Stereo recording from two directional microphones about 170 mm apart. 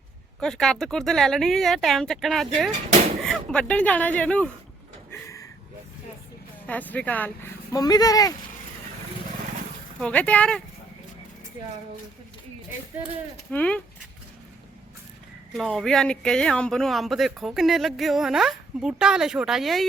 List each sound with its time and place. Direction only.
0.3 s speech: 5° left (ahead or behind)
5.1 s a sound: 15° left (ahead or behind)
6.7 s speech: 10° left (ahead or behind)
7.8 s speech: 20° left (ahead or behind)
10.0 s speech: 5° left (ahead or behind)
13.5 s speech: 5° left (ahead or behind)
15.5 s speech: centre (ahead or behind)